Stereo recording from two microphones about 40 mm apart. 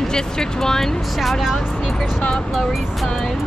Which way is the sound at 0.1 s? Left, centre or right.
Centre.